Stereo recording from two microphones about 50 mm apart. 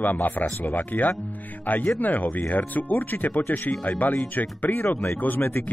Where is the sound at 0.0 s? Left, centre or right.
Left.